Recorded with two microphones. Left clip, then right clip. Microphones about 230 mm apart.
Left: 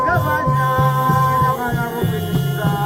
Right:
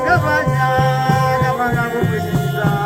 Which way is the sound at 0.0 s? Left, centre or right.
Right.